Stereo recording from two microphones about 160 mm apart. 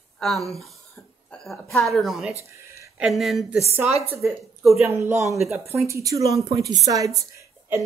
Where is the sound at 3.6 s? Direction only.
15° right (ahead or behind).